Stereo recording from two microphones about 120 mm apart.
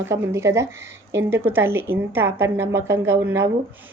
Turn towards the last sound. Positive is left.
turn(degrees=-20)  # may be behind; listen again after turning